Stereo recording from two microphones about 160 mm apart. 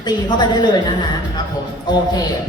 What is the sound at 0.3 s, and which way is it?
Speech, 30° left (ahead or behind).